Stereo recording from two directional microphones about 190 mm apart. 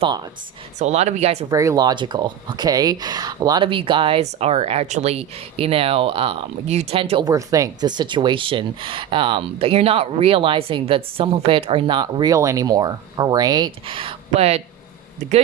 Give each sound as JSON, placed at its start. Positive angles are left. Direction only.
{"t": 0.8, "sound": "speech", "side_deg": -35}
{"t": 1.5, "sound": "speech", "side_deg": -20}